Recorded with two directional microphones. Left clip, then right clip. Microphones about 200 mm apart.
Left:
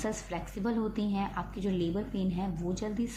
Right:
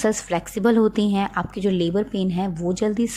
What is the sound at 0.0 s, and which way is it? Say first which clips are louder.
A woman's voice: right 13 dB; 50° right (ahead or behind).